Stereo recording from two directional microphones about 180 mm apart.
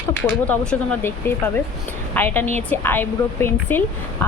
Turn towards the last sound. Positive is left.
turn(degrees=10)  # may be behind; listen again after turning